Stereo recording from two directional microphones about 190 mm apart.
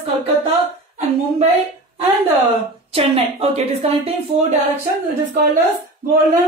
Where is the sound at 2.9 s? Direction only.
30° right (ahead or behind).